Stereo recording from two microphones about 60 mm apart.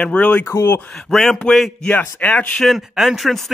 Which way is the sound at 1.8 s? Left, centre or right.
Left.